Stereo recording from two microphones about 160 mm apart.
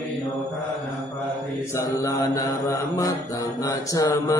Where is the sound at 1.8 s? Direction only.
20° left (ahead or behind).